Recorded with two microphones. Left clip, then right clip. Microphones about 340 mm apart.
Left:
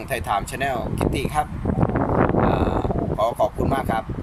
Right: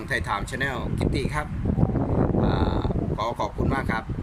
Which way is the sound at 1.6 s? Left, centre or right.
Left.